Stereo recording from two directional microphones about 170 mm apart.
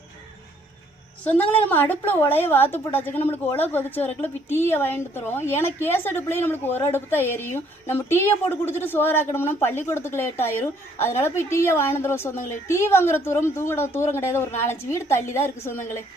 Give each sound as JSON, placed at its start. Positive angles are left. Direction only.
{"t": 1.2, "sound": "a woman's voice", "side_deg": 10}